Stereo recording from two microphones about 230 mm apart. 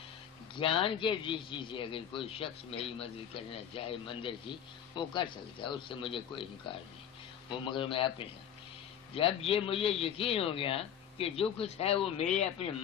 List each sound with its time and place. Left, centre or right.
0.6 s speech: left
7.4 s speech: left